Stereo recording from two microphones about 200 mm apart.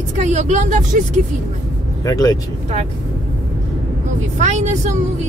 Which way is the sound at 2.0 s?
20° left (ahead or behind).